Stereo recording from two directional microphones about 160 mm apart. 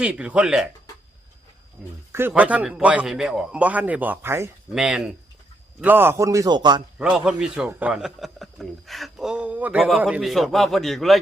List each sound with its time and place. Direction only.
0.0 s a man's voice: 5° right (ahead or behind)
2.1 s a man's voice: 10° right (ahead or behind)
4.7 s a man's voice: 5° right (ahead or behind); by 6.8 s 30° right (ahead or behind)
7.0 s speech: 5° right (ahead or behind)